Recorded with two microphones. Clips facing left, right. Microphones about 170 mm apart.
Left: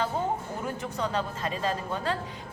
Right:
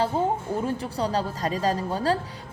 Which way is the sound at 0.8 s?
35° right (ahead or behind).